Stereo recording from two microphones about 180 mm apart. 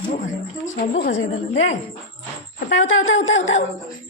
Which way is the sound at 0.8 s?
65° left (ahead or behind).